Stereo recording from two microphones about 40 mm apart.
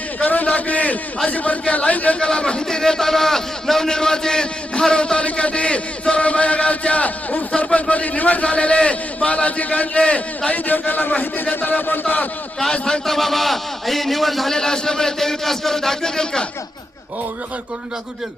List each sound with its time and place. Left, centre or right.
0.3 s a sound: left
1.3 s speech: left
2.1 s a man's voice: left
10.5 s a man's voice: left
12.8 s speech: centre
13.1 s a man's voice: centre
14.5 s speech: centre